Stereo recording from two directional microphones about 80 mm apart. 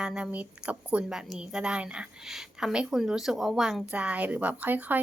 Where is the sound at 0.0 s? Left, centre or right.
Centre.